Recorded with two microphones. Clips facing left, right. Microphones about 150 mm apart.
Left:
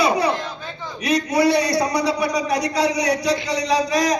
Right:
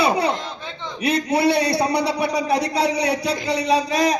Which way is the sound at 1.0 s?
30° right (ahead or behind).